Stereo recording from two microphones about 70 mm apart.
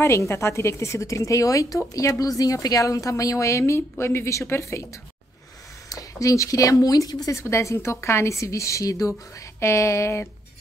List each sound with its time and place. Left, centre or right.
0.0 s a woman's voice: left
5.9 s a woman's voice: left
7.3 s a woman's voice: left